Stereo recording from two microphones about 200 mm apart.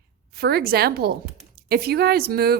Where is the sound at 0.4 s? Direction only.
50° right (ahead or behind).